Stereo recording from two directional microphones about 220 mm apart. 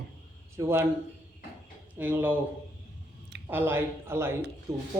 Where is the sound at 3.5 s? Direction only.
10° right (ahead or behind).